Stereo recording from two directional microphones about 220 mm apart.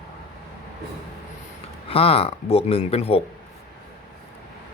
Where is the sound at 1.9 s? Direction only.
25° left (ahead or behind).